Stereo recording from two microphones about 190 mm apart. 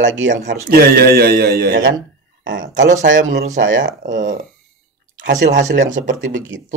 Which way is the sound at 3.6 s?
80° right.